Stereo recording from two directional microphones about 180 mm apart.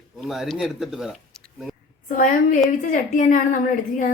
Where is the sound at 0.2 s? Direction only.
Centre (ahead or behind).